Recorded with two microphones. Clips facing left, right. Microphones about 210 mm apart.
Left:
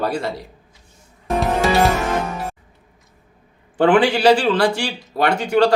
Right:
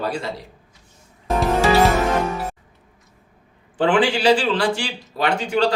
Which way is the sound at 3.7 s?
60° left (ahead or behind).